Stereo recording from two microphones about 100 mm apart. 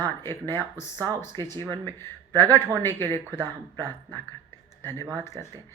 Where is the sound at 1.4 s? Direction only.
40° right (ahead or behind).